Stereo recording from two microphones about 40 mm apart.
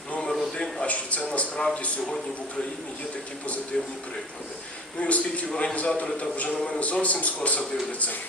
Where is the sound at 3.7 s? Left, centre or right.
Centre.